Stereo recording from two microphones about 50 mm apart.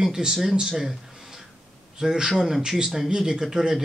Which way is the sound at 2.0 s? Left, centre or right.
Centre.